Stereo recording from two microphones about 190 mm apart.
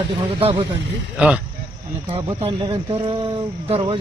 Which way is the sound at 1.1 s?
5° right (ahead or behind).